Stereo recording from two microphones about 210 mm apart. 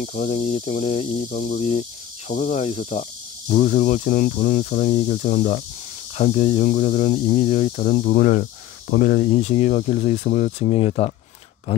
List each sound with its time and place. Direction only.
0.0 s speech: 35° left (ahead or behind)